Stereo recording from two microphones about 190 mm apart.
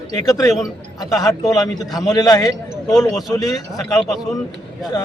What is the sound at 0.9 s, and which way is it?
Speech, 20° left (ahead or behind).